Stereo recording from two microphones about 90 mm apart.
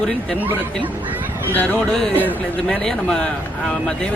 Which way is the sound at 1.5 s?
15° left (ahead or behind).